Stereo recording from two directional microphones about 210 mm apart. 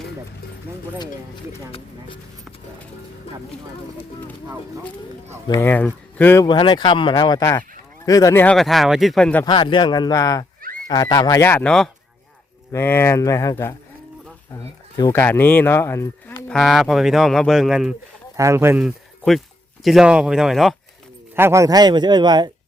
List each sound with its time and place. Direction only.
5.5 s speech: 10° left (ahead or behind)
9.4 s speech: 20° left (ahead or behind)
16.5 s speech: centre (ahead or behind)
21.3 s a man's voice: 10° right (ahead or behind)